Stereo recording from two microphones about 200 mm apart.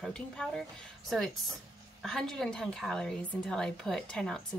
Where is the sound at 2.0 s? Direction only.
Centre (ahead or behind).